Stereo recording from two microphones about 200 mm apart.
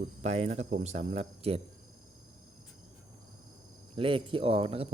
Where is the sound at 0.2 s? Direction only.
30° right (ahead or behind).